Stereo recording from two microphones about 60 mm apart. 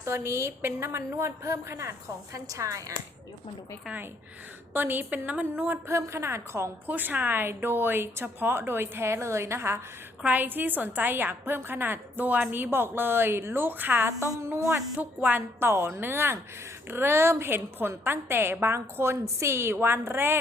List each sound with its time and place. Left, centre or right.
0.0 s a woman's voice: right
2.5 s speech: right
4.7 s a woman's voice: right
6.1 s a woman's voice: right
6.8 s a woman's voice: right
10.2 s a woman's voice: right
15.4 s a woman's voice: right